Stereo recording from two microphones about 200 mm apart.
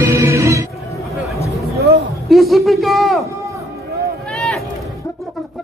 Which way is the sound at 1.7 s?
50° right (ahead or behind).